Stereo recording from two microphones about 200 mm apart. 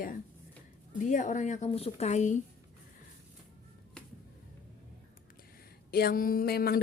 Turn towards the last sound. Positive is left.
turn(degrees=50)  # may be behind; listen again after turning